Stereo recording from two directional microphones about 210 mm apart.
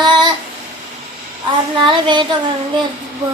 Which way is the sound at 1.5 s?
20° right (ahead or behind).